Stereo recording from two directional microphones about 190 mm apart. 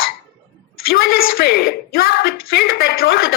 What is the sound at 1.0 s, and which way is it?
A woman's voice, 50° left (ahead or behind).